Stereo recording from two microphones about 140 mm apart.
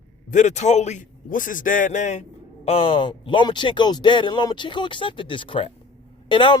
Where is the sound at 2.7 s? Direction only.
40° left (ahead or behind).